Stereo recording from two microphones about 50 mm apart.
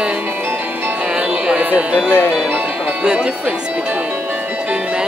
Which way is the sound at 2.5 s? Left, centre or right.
Right.